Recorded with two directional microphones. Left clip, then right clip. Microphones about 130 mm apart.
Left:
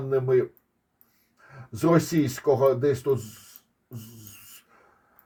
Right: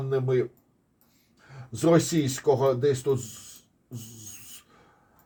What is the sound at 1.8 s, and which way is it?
Speech, 45° left (ahead or behind).